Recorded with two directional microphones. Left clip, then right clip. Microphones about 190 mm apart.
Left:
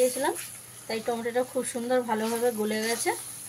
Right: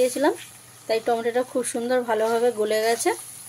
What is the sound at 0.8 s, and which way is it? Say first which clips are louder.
Speech: right 8 dB; 55° right (ahead or behind).